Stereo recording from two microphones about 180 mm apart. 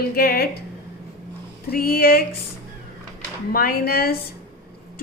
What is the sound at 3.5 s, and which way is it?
Speech, 55° left (ahead or behind).